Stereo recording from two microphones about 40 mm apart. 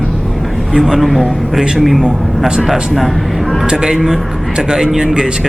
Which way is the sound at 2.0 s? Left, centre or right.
Centre.